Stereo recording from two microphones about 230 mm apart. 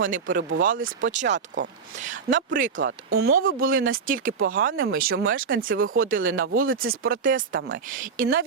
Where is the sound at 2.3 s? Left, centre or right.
Centre.